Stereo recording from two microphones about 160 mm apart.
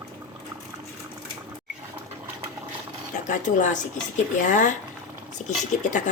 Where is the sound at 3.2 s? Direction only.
50° left (ahead or behind).